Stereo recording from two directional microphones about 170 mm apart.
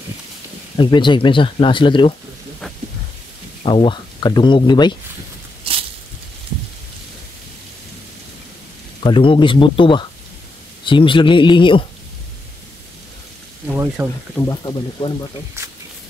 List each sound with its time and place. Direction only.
0.7 s speech: 25° left (ahead or behind)
3.6 s speech: 30° left (ahead or behind)
5.6 s a sound: 35° right (ahead or behind)
9.0 s speech: 30° left (ahead or behind)
13.7 s a sound: 5° right (ahead or behind)
14.4 s speech: 20° left (ahead or behind)